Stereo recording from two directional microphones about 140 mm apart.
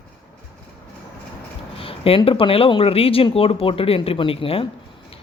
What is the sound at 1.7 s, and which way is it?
Speech, 40° left (ahead or behind).